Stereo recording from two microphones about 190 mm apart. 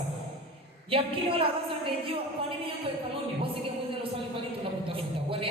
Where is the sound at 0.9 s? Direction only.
30° right (ahead or behind).